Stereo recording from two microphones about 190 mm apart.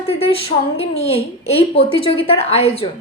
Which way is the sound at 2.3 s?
30° left (ahead or behind).